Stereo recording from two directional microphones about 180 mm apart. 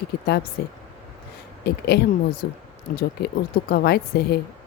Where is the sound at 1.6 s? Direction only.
65° left (ahead or behind).